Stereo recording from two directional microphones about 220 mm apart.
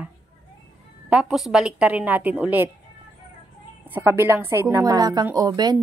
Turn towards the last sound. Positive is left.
turn(degrees=-15)  # may be behind; listen again after turning